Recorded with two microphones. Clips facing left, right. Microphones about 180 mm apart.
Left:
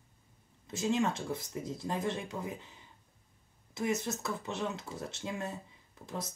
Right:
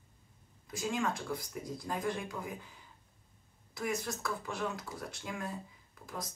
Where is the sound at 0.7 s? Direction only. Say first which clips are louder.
Left 4 dB; 25° left (ahead or behind).